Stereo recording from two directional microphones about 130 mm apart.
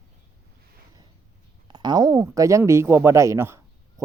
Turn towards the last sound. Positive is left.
turn(degrees=-20)  # may be behind; listen again after turning